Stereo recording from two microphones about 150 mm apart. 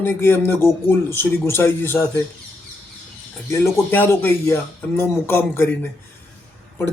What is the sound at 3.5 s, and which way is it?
Speech, 15° left (ahead or behind).